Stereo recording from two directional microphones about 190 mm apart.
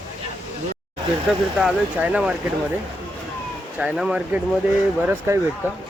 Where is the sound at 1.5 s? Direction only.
5° right (ahead or behind).